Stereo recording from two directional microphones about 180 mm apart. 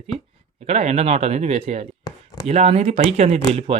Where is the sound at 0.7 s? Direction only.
35° right (ahead or behind).